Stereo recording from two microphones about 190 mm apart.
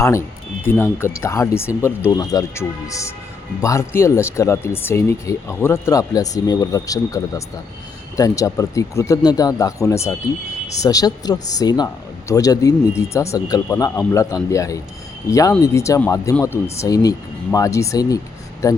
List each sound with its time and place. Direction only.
0.0 s speech: 15° left (ahead or behind)